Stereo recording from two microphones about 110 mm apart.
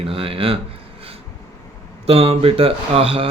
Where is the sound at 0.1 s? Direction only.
55° right (ahead or behind).